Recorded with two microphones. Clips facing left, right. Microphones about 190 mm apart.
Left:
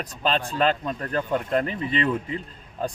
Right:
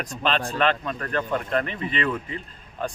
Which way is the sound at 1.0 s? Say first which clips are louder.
Left 1 dB; 25° left (ahead or behind).